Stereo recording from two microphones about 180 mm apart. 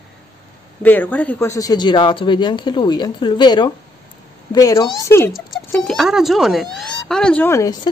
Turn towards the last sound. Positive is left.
turn(degrees=20)  # may be behind; listen again after turning